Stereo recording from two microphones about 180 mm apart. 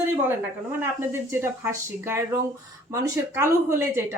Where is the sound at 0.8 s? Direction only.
15° right (ahead or behind).